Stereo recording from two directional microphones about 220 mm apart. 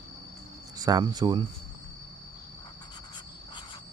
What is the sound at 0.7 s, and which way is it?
Speech, 15° right (ahead or behind).